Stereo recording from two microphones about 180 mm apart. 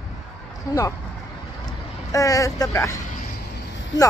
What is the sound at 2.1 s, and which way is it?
Speech, 20° left (ahead or behind).